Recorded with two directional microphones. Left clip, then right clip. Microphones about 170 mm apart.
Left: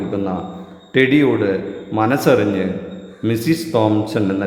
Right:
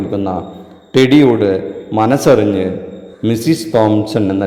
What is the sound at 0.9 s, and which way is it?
A man's voice, 25° right (ahead or behind).